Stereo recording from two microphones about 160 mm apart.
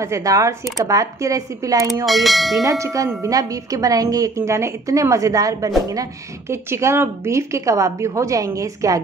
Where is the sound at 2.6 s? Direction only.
20° right (ahead or behind).